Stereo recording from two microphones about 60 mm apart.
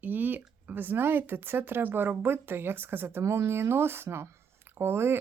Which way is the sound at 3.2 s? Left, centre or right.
Right.